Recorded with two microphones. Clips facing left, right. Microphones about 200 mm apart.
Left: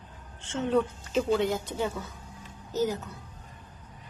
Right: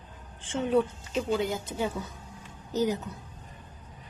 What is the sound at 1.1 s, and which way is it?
Speech, centre (ahead or behind).